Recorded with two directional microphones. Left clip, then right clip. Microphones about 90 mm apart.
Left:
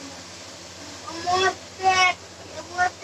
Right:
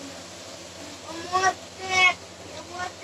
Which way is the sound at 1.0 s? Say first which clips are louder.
Left 2 dB; 30° left (ahead or behind).